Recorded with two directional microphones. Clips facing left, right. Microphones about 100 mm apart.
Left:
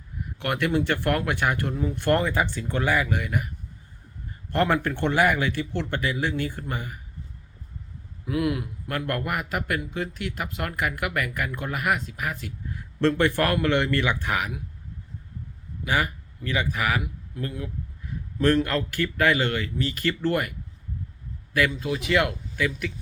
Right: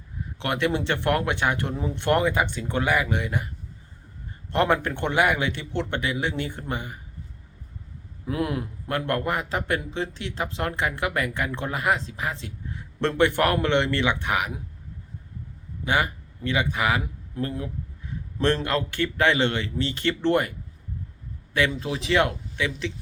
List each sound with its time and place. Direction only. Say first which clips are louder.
0.3 s a man's voice: even; 20° right (ahead or behind)
4.5 s a man's voice: right 1 dB; 20° right (ahead or behind)
8.3 s a man's voice: left 1 dB; 35° right (ahead or behind)
8.9 s a man's voice: right 3 dB; 25° right (ahead or behind)
15.8 s speech: right 1 dB; 25° right (ahead or behind)
17.0 s a man's voice: right 3 dB; 35° right (ahead or behind)